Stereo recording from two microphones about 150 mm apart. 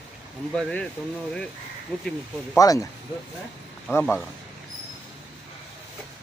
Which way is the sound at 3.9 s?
15° left (ahead or behind).